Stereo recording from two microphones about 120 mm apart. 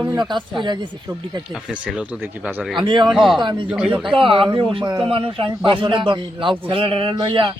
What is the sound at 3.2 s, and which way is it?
Speech, centre (ahead or behind).